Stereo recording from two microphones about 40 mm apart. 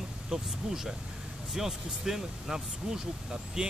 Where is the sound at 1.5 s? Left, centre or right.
Centre.